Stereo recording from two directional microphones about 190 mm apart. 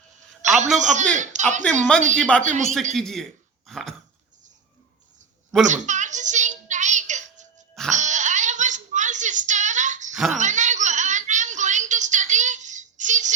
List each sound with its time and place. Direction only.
0.4 s a man's voice: 40° right (ahead or behind)
2.1 s a man's voice: 5° left (ahead or behind)
2.4 s speech: 40° right (ahead or behind)
2.9 s a man's voice: centre (ahead or behind)
3.7 s dog: centre (ahead or behind)
5.6 s a sound: 40° right (ahead or behind)